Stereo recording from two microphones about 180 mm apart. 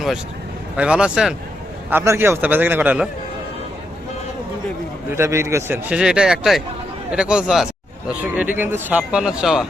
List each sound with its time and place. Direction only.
0.8 s speech: 5° right (ahead or behind)
5.1 s a man's voice: 15° right (ahead or behind)